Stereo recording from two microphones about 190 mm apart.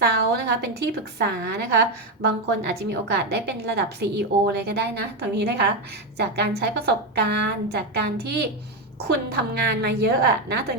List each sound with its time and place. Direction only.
0.5 s a woman's voice: 60° right (ahead or behind)